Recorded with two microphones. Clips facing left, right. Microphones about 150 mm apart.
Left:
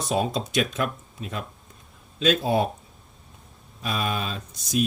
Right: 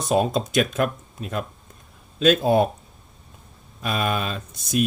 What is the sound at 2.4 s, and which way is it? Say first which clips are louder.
Speech: right 5 dB; 50° right (ahead or behind).